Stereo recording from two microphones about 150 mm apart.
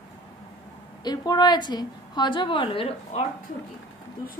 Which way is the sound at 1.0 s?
30° left (ahead or behind).